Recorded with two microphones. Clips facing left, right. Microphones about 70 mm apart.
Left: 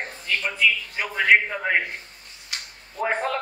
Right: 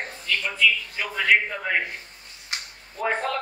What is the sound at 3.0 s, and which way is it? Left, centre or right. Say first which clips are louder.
Speech: left 1 dB; centre.